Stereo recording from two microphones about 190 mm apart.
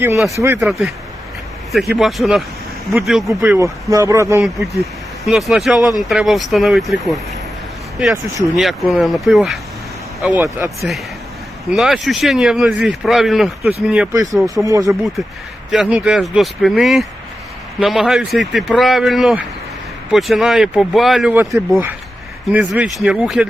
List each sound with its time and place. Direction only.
0.3 s speech: 15° right (ahead or behind)
0.6 s speech: centre (ahead or behind)
2.0 s speech: centre (ahead or behind)
3.6 s speech: 15° right (ahead or behind)
4.7 s speech: centre (ahead or behind)
8.1 s speech: 15° right (ahead or behind)
8.5 s speech: centre (ahead or behind)
10.4 s speech: 15° right (ahead or behind)
11.7 s speech: centre (ahead or behind)
14.1 s speech: 20° right (ahead or behind)
15.7 s speech: centre (ahead or behind)